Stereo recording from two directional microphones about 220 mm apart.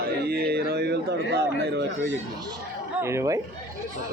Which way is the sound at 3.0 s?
10° right (ahead or behind).